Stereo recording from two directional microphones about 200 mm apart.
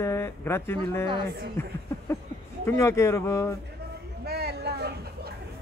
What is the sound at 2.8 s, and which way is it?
Speech, 15° left (ahead or behind).